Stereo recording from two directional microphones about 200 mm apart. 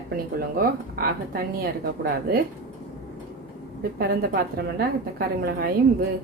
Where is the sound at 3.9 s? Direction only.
50° right (ahead or behind).